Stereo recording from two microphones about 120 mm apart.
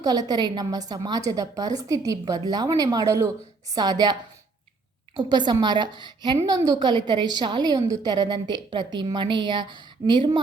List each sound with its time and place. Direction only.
0.0 s a woman's voice: 35° right (ahead or behind)
5.5 s a woman's voice: 35° right (ahead or behind)